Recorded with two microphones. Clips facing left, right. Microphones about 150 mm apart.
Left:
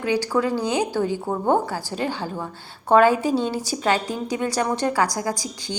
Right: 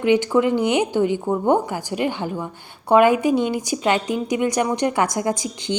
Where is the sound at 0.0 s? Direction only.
20° right (ahead or behind).